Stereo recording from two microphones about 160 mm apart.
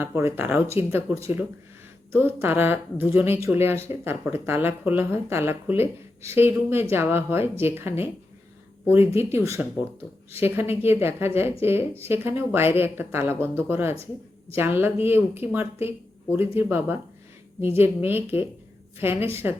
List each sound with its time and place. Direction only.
0.0 s speech: 15° right (ahead or behind)